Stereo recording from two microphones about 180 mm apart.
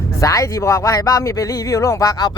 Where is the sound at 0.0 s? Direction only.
15° left (ahead or behind).